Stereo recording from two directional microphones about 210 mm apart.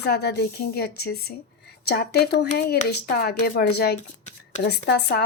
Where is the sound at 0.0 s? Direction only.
50° left (ahead or behind).